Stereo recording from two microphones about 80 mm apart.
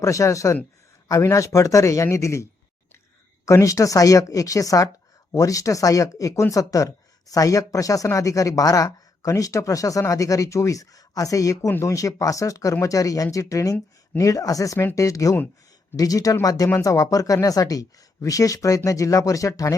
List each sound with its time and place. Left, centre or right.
0.0 s a man's voice: left